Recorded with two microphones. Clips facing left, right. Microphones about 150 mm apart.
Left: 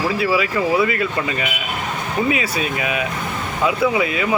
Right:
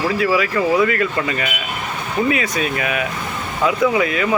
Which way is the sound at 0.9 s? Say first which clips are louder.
Right 2 dB; 15° left (ahead or behind).